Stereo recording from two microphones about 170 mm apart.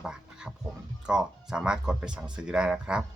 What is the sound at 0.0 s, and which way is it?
Speech, 5° right (ahead or behind).